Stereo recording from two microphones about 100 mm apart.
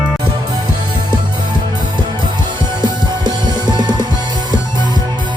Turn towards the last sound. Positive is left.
turn(degrees=-45)  # may be behind; listen again after turning